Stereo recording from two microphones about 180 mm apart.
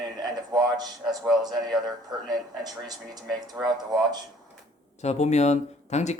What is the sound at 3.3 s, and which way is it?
Speech, centre (ahead or behind).